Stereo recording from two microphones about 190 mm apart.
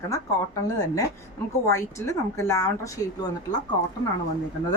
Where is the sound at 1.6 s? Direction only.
15° left (ahead or behind).